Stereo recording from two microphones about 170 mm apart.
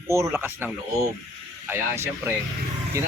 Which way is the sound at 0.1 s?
15° right (ahead or behind).